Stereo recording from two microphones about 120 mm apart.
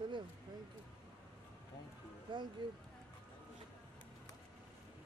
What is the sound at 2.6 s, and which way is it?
Speech, 40° right (ahead or behind).